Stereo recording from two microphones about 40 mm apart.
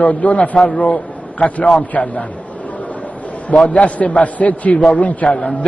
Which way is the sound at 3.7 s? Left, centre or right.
Left.